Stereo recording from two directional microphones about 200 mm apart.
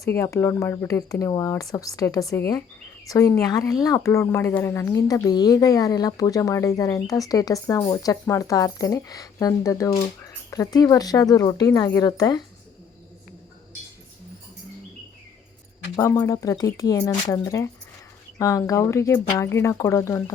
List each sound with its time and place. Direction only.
0.0 s speech: 15° left (ahead or behind)
16.0 s speech: 15° left (ahead or behind)